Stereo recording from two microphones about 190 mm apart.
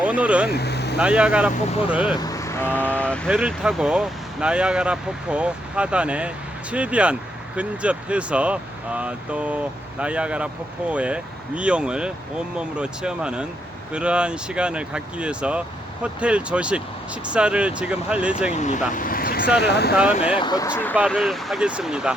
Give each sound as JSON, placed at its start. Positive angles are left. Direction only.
{"t": 0.0, "sound": "speech", "side_deg": -5}
{"t": 0.5, "sound": "speech", "side_deg": 60}
{"t": 0.9, "sound": "speech", "side_deg": -5}
{"t": 2.1, "sound": "speech", "side_deg": 20}
{"t": 3.2, "sound": "speech", "side_deg": -5}
{"t": 18.5, "sound": "speech", "side_deg": 40}
{"t": 20.4, "sound": "speech", "side_deg": 20}
{"t": 21.1, "sound": "speech", "side_deg": 0}